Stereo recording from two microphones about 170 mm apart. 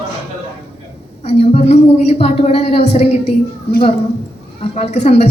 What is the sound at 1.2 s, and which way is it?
A woman's voice, 40° left (ahead or behind).